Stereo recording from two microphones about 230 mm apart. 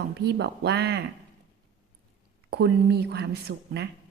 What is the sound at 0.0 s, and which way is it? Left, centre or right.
A woman's voice, right.